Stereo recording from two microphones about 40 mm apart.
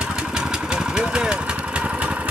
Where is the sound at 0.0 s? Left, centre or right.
Centre.